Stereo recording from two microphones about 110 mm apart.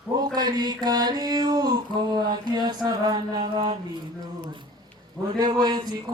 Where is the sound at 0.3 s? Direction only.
40° right (ahead or behind).